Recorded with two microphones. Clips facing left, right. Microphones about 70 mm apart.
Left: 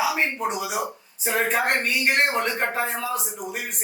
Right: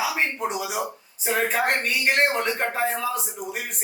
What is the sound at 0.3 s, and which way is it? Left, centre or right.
A man's voice, centre.